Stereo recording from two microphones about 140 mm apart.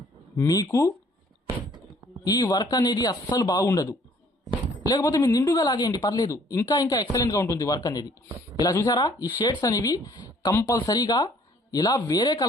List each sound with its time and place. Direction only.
0.3 s speech: 25° left (ahead or behind)
2.2 s speech: 25° left (ahead or behind)